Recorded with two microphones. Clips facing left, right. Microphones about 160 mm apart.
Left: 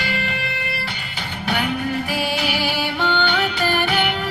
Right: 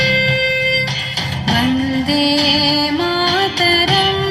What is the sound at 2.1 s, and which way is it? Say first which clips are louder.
Music: right 9 dB; 85° right.